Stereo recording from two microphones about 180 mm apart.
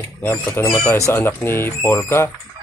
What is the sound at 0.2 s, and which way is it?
Speech, 10° left (ahead or behind).